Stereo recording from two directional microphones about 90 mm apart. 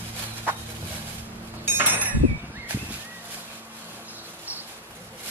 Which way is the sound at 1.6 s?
20° right (ahead or behind).